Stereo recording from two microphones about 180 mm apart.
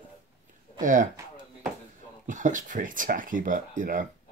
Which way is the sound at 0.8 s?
45° right (ahead or behind).